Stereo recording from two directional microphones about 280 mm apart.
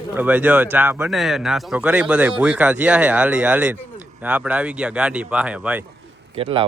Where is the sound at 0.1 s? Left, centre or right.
Centre.